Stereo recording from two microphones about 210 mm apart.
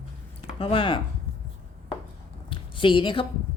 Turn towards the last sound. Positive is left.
turn(degrees=25)  # may be behind; listen again after turning